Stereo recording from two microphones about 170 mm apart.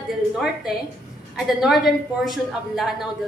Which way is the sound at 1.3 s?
Centre (ahead or behind).